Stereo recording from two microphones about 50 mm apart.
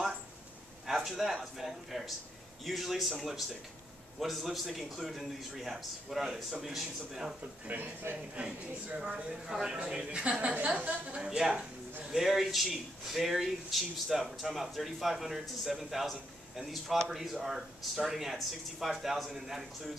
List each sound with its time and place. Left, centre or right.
0.8 s a man's voice: centre
7.6 s speech: right
8.4 s speech: right
11.2 s a man's voice: centre